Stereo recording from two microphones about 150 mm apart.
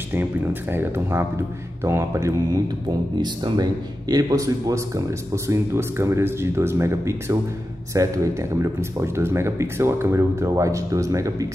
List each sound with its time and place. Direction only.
0.1 s speech: 15° right (ahead or behind)